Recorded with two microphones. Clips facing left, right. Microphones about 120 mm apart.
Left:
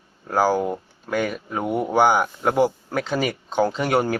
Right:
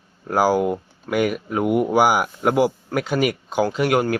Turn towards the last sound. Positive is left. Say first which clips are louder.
# right 2 dB
turn(degrees=-5)  # may be behind; listen again after turning